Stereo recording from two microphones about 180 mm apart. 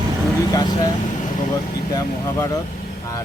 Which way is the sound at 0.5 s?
25° left (ahead or behind).